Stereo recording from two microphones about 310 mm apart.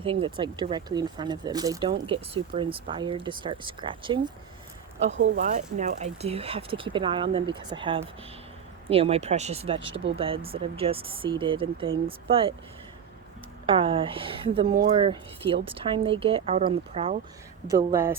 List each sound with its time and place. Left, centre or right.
0.0 s speech: centre
5.1 s speech: right
5.4 s speech: right
13.7 s speech: centre
17.9 s speech: centre